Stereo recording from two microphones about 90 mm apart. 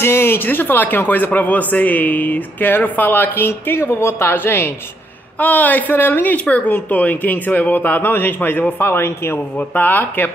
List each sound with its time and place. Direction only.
0.0 s speech: 25° left (ahead or behind)